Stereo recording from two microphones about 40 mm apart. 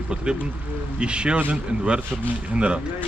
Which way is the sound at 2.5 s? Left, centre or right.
Right.